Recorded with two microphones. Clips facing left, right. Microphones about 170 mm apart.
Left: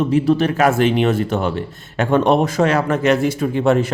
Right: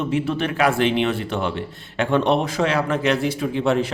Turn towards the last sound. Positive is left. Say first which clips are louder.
# left 4 dB
turn(degrees=45)  # may be behind; listen again after turning